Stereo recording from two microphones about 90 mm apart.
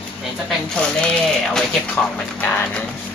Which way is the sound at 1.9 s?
20° left (ahead or behind).